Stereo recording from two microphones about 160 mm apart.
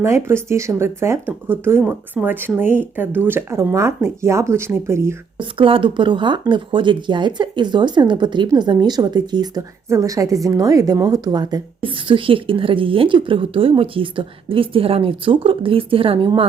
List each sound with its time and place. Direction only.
0.0 s speech: 15° right (ahead or behind)
5.4 s a woman's voice: 35° right (ahead or behind)